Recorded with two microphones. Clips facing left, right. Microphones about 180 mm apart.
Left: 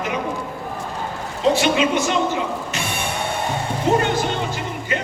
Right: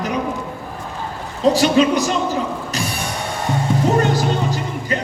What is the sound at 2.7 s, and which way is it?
Music, 35° right (ahead or behind).